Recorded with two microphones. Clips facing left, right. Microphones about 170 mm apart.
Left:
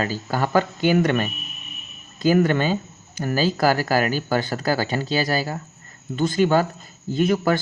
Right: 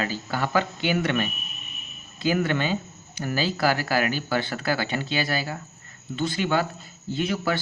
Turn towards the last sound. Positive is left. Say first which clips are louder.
# left 6 dB
turn(degrees=45)  # may be behind; listen again after turning